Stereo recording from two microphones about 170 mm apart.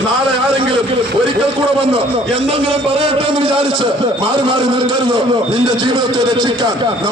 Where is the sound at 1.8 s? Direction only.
30° right (ahead or behind).